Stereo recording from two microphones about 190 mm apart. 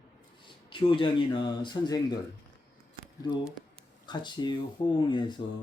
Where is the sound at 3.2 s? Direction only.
20° left (ahead or behind).